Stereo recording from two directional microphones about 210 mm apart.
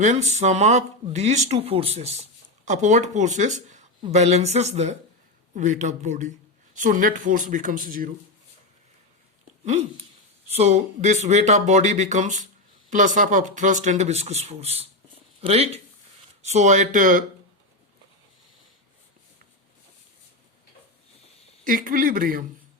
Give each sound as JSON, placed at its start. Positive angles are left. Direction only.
{"t": 0.0, "sound": "speech", "side_deg": -35}
{"t": 9.6, "sound": "speech", "side_deg": -30}
{"t": 21.6, "sound": "speech", "side_deg": -40}